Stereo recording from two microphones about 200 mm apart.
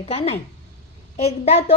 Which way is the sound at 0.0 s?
30° left (ahead or behind).